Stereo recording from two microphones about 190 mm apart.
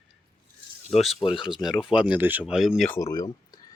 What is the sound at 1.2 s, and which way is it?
Speech, 25° left (ahead or behind).